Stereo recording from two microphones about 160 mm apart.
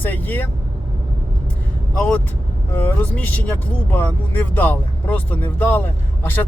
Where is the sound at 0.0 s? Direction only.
10° left (ahead or behind).